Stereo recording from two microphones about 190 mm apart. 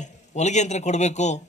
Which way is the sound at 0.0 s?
40° left (ahead or behind).